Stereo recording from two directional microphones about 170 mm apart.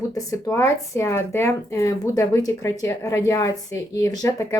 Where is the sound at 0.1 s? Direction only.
20° left (ahead or behind).